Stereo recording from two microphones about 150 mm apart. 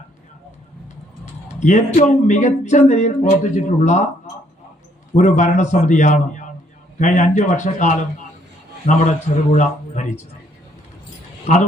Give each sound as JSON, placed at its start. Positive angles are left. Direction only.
{"t": 1.6, "sound": "speech", "side_deg": 55}
{"t": 5.1, "sound": "speech", "side_deg": 55}
{"t": 11.5, "sound": "speech", "side_deg": 45}